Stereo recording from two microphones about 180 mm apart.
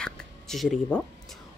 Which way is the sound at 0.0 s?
5° left (ahead or behind).